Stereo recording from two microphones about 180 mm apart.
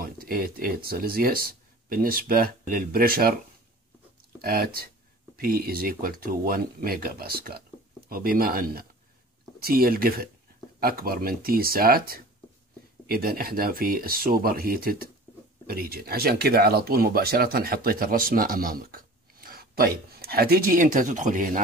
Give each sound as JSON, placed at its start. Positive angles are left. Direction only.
{"t": 0.0, "sound": "speech", "side_deg": -55}
{"t": 4.4, "sound": "speech", "side_deg": -55}